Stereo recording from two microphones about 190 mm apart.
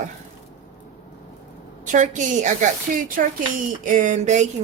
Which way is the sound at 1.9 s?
40° right (ahead or behind).